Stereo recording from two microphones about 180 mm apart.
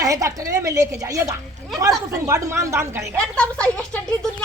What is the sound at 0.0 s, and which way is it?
A woman's voice, 20° right (ahead or behind).